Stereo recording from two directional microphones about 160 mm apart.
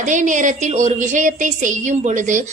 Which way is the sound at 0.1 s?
50° right (ahead or behind).